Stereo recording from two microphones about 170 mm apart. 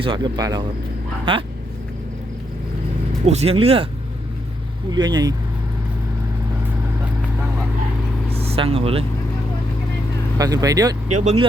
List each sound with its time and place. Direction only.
0.0 s speech: 30° right (ahead or behind)
3.2 s speech: 40° right (ahead or behind)
4.9 s speech: 25° right (ahead or behind)
8.3 s vehicle: 35° right (ahead or behind)
10.3 s speech: 20° right (ahead or behind)
11.1 s speech: 45° right (ahead or behind)